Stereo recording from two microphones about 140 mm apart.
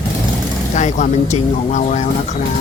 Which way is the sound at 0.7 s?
60° left (ahead or behind).